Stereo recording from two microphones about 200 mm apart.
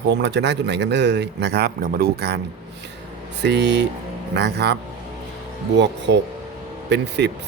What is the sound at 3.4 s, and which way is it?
Speech, 60° right (ahead or behind).